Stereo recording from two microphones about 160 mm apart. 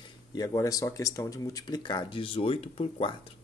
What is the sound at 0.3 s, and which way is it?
Speech, 25° left (ahead or behind).